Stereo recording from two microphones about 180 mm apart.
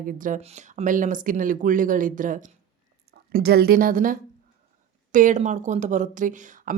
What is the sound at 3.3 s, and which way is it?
Speech, 60° right (ahead or behind).